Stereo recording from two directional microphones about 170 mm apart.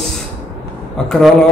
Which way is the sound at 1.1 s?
Centre (ahead or behind).